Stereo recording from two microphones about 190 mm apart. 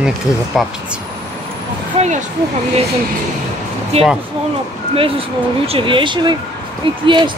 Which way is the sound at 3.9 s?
30° right (ahead or behind).